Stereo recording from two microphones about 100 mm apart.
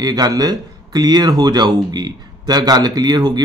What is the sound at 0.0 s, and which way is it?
Speech, 40° right (ahead or behind).